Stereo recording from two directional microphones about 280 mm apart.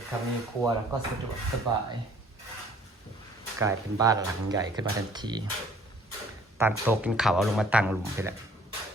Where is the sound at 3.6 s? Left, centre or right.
Centre.